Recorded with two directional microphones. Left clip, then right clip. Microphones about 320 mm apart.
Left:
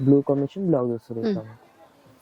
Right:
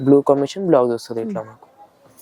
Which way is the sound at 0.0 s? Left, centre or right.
Centre.